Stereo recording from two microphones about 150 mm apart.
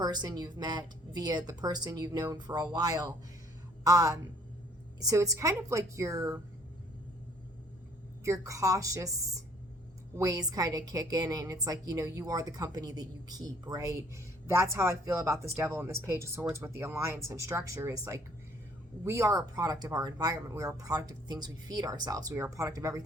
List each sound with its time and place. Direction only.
0.0 s a woman's voice: 25° right (ahead or behind)
8.2 s a woman's voice: 20° right (ahead or behind)